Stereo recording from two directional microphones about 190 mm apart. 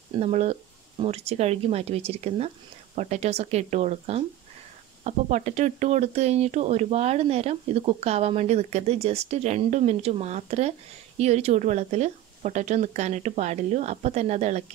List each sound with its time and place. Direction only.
0.2 s speech: 35° right (ahead or behind)